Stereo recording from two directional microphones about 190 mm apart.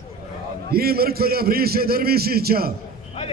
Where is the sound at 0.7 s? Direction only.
55° right (ahead or behind).